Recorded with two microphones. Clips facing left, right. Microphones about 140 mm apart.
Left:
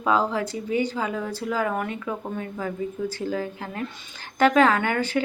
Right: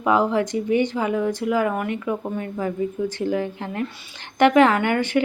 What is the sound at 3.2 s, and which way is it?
A woman's voice, 20° right (ahead or behind).